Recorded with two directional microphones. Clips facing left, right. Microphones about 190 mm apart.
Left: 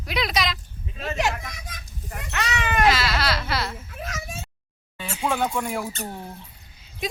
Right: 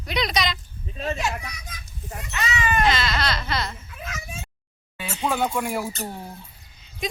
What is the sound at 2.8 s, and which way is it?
Baby cry, 5° left (ahead or behind).